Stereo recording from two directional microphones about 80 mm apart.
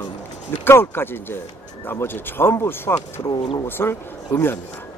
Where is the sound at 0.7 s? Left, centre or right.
Left.